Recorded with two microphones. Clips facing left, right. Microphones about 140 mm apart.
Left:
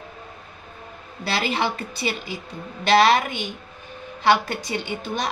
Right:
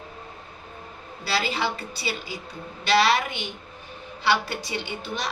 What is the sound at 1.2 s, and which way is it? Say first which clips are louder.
A woman's voice: left 2 dB; 50° left (ahead or behind).